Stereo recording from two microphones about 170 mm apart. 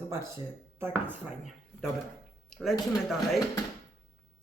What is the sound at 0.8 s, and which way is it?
Speech, 15° right (ahead or behind).